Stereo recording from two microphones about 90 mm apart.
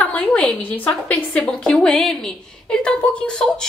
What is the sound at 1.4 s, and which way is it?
A woman's voice, 5° left (ahead or behind).